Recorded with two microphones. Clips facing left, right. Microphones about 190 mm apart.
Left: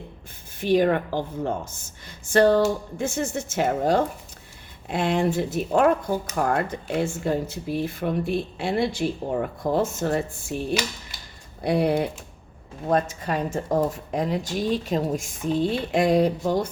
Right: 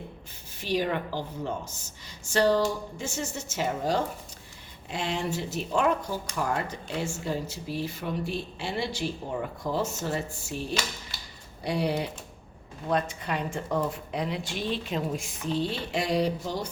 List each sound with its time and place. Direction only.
0.6 s speech: 55° left (ahead or behind)